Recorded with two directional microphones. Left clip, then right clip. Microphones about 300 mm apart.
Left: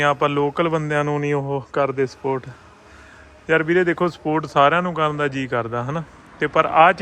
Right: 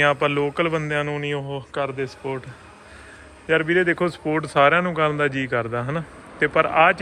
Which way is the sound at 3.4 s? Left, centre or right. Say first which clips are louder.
Left 1 dB; centre.